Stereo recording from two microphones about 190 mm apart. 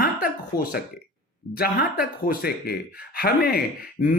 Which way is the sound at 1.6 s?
50° left (ahead or behind).